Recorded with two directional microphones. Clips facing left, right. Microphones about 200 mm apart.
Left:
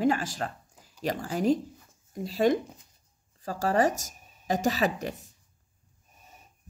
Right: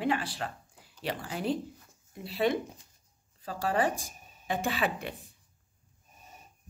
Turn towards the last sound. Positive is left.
turn(degrees=40)  # may be behind; listen again after turning